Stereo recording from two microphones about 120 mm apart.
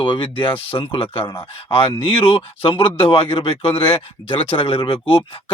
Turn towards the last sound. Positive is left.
turn(degrees=50)  # may be behind; listen again after turning